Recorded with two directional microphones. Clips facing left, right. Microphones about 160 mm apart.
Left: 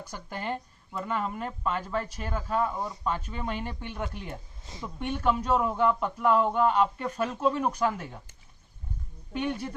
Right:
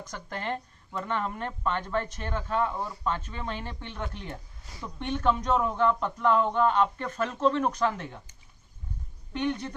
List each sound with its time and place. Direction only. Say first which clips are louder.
0.0 s a man's voice: even; 10° left (ahead or behind)
2.7 s a man's voice: even; 20° left (ahead or behind)
4.6 s speech: left 3 dB; 20° left (ahead or behind)
4.9 s a man's voice: right 1 dB; 10° left (ahead or behind)
9.3 s a man's voice: right 1 dB; 10° left (ahead or behind)